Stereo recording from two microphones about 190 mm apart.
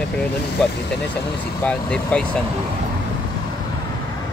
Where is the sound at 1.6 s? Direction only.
5° left (ahead or behind).